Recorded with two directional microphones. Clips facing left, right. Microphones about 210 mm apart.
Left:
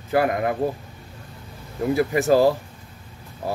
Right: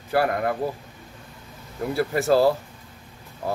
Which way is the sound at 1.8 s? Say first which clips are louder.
Left 3 dB; 15° left (ahead or behind).